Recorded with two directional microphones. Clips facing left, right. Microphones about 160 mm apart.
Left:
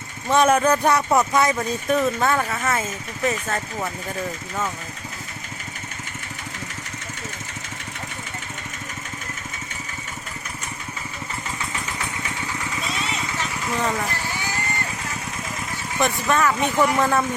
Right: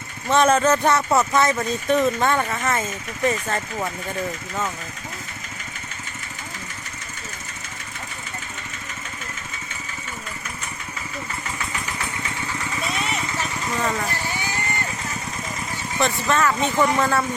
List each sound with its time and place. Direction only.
0.3 s speech: 10° left (ahead or behind); by 3.9 s 5° right (ahead or behind)
11.9 s vehicle: 15° left (ahead or behind)
12.9 s vehicle: 10° right (ahead or behind)
13.7 s a sound: 5° left (ahead or behind)
16.0 s speech: 10° left (ahead or behind)